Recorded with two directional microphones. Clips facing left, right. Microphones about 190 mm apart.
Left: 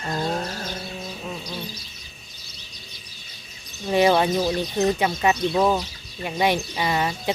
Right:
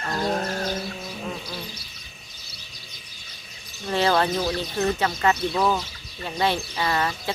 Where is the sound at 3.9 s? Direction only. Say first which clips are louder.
Left 3 dB; 15° left (ahead or behind).